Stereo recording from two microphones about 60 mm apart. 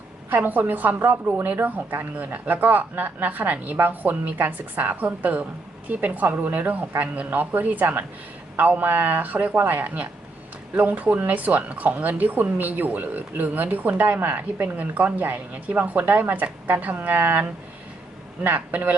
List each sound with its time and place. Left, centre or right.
0.3 s speech: right